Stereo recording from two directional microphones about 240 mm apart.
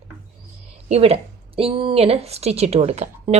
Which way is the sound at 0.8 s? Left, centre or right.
Right.